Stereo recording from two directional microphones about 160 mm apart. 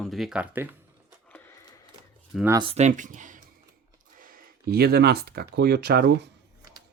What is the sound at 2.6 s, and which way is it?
Speech, 40° right (ahead or behind).